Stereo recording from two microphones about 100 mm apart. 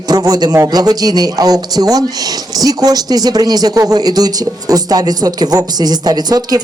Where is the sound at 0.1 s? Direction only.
40° right (ahead or behind).